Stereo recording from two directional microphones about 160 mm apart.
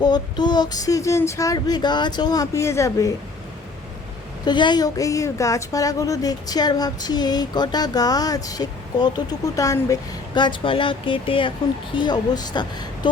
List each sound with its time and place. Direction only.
0.0 s a woman's voice: 25° left (ahead or behind)
4.4 s a woman's voice: 30° left (ahead or behind)